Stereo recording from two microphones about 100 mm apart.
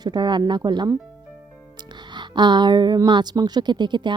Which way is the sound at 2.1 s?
50° right (ahead or behind).